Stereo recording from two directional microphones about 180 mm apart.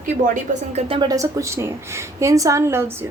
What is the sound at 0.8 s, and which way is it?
A woman's voice, 30° right (ahead or behind).